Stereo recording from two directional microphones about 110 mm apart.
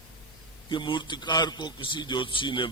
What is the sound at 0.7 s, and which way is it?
A man's voice, 45° left (ahead or behind).